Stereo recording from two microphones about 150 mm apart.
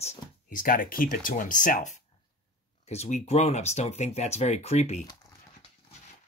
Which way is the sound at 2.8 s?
45° left (ahead or behind).